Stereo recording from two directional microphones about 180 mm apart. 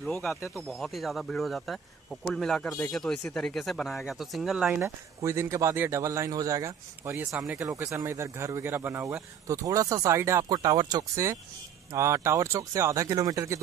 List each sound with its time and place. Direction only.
0.0 s speech: centre (ahead or behind)
4.8 s speech: 15° right (ahead or behind)